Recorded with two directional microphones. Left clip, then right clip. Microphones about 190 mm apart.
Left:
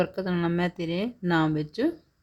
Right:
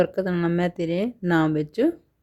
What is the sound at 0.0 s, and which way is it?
Speech, 20° right (ahead or behind).